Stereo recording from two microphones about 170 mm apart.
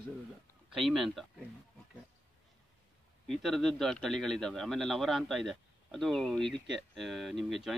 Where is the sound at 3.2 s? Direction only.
Centre (ahead or behind).